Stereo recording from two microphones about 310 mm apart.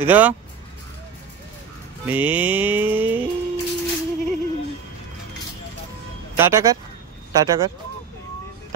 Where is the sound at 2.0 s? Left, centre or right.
Centre.